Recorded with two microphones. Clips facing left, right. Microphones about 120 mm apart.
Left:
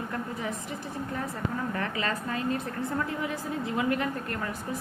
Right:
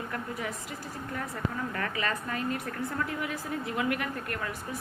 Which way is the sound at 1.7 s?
25° left (ahead or behind).